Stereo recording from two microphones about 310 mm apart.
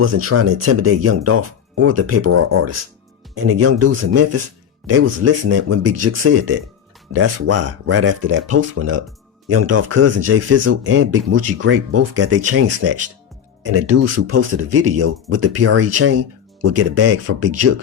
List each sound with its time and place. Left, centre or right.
0.0 s speech: right